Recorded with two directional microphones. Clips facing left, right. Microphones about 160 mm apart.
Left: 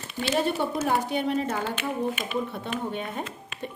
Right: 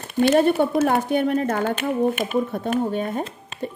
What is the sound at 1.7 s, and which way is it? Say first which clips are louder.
Speech: right 7 dB; 45° right (ahead or behind).